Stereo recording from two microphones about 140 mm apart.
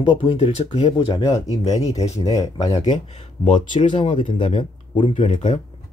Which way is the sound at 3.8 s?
35° left (ahead or behind).